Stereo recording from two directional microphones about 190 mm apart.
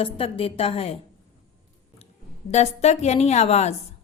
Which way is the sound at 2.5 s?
35° left (ahead or behind).